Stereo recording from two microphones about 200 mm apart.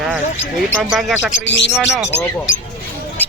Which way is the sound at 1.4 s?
65° left (ahead or behind).